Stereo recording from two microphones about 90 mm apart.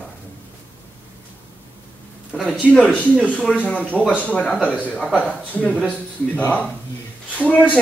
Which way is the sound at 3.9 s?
Centre (ahead or behind).